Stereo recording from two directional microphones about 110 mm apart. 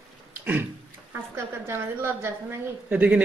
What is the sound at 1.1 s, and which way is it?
A woman's voice, 20° right (ahead or behind).